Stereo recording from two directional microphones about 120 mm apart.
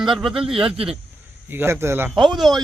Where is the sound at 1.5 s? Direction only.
20° right (ahead or behind).